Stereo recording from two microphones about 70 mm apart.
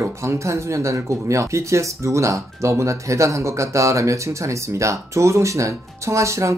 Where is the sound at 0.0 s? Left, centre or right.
Right.